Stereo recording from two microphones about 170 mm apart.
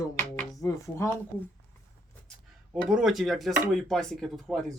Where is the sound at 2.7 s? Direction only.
5° right (ahead or behind).